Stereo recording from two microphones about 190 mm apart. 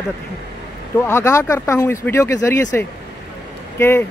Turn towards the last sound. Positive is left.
turn(degrees=10)  # may be behind; listen again after turning